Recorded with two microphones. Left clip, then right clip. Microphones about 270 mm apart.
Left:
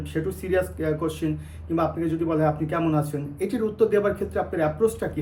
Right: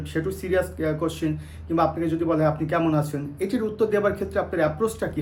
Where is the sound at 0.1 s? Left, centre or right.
Centre.